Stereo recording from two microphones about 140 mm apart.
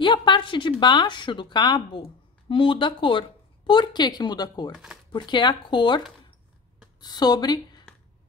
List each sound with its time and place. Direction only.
0.0 s speech: 35° left (ahead or behind)